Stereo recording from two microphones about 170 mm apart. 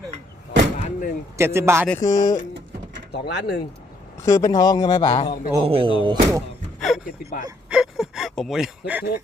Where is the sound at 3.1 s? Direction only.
75° left (ahead or behind).